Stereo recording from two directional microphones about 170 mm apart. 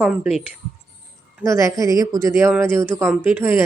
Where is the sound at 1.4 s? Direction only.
15° right (ahead or behind).